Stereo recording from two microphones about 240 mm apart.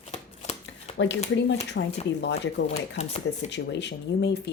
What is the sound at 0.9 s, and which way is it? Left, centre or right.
Speech, left.